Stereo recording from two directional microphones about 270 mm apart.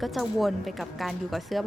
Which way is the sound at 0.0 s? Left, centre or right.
Centre.